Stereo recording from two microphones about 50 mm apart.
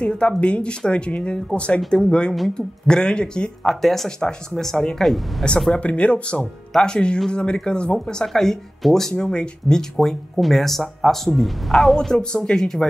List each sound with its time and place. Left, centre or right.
0.0 s speech: centre
3.6 s speech: centre
9.1 s speech: centre